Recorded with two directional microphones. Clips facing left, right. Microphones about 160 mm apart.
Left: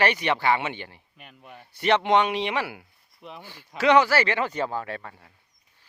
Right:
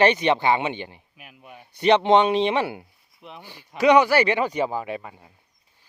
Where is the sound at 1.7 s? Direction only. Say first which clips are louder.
Right 4 dB; 20° right (ahead or behind).